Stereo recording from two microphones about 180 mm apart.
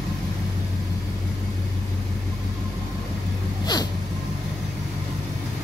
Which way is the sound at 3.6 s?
20° left (ahead or behind).